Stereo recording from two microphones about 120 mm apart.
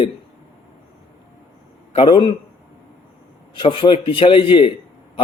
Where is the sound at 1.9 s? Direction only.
45° left (ahead or behind).